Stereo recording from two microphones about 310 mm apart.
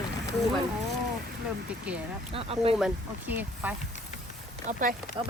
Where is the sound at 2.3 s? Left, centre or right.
Centre.